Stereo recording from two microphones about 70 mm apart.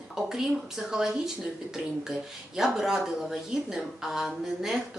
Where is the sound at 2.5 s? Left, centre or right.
Centre.